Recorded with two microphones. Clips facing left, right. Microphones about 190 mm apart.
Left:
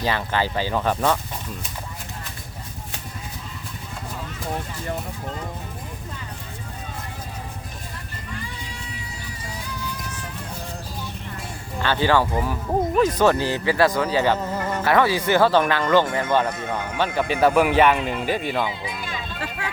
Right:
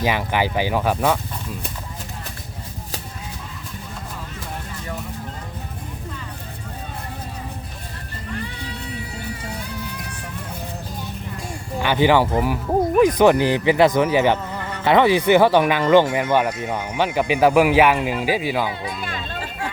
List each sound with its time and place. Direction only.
0.0 s speech: 15° right (ahead or behind)
11.8 s speech: 15° right (ahead or behind)
14.5 s music: 40° left (ahead or behind)
14.8 s speech: 20° right (ahead or behind)
18.7 s speech: 55° right (ahead or behind)